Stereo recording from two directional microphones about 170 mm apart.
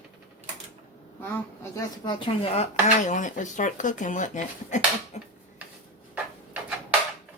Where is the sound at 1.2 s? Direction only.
10° left (ahead or behind).